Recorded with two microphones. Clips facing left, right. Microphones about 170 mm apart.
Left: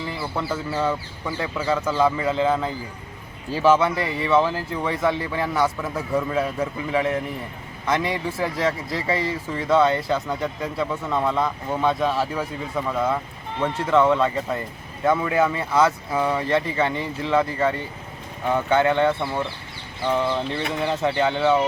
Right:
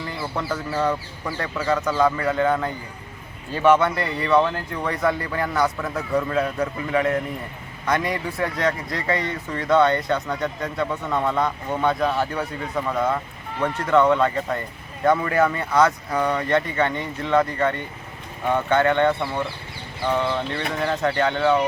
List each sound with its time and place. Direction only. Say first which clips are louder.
0.0 s speech: even; centre (ahead or behind)
2.2 s speech: even; 25° left (ahead or behind)
2.5 s speech: even; 5° left (ahead or behind)